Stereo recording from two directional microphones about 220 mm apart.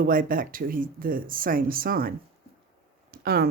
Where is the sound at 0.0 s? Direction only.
40° right (ahead or behind).